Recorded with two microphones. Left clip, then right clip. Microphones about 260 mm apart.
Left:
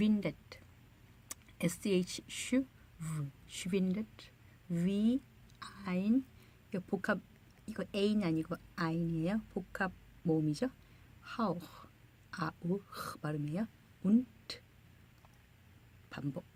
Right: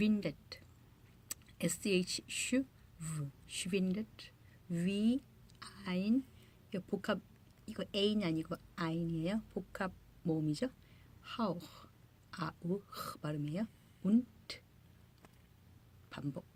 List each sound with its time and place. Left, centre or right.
0.0 s a woman's voice: left
16.0 s speech: centre